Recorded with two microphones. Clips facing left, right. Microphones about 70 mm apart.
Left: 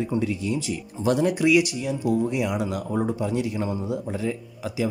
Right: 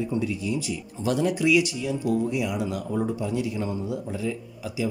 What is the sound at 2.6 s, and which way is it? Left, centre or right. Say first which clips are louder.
A man's voice: left 1 dB; left.